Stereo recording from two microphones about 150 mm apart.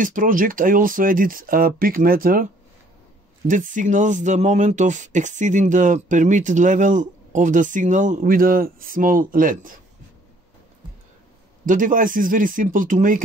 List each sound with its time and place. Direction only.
0.0 s speech: 65° right (ahead or behind)
3.4 s speech: 60° right (ahead or behind)
11.6 s speech: 60° right (ahead or behind)